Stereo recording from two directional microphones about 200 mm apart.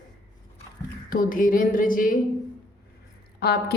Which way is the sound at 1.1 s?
45° left (ahead or behind).